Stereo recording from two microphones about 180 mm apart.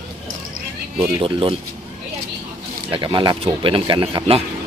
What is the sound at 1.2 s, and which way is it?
Speech, 30° right (ahead or behind).